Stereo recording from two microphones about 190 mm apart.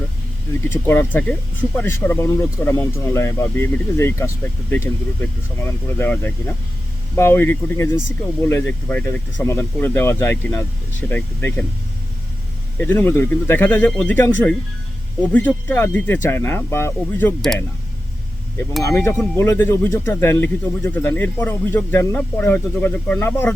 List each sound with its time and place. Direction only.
0.7 s speech: 10° left (ahead or behind)
5.6 s speech: 10° left (ahead or behind)
12.8 s speech: 10° left (ahead or behind)
18.8 s speech: 15° left (ahead or behind)